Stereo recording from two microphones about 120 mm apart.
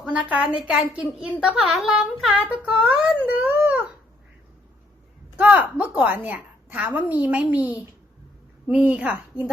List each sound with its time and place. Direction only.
0.0 s a woman's voice: 10° right (ahead or behind)
3.2 s a sound: 15° right (ahead or behind)
5.4 s a woman's voice: 15° right (ahead or behind)
9.3 s a woman's voice: 35° left (ahead or behind)